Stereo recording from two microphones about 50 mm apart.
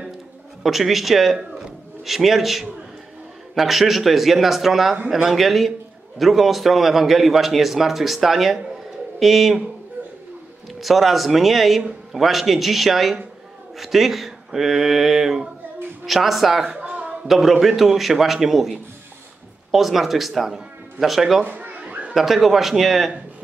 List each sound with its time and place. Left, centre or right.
0.7 s a man's voice: centre
10.8 s a man's voice: centre
16.8 s a sound: right
17.3 s a man's voice: centre
21.5 s children playing: right
22.1 s a man's voice: centre